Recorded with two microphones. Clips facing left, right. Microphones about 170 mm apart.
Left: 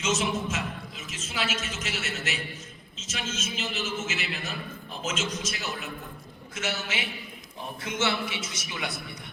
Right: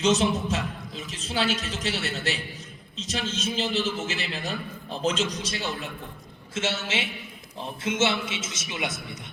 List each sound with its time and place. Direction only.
0.0 s a man's voice: 35° right (ahead or behind)